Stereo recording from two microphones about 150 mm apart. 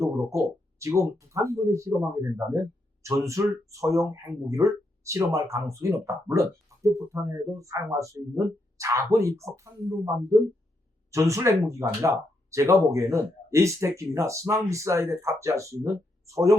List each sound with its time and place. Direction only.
0.0 s speech: 20° right (ahead or behind)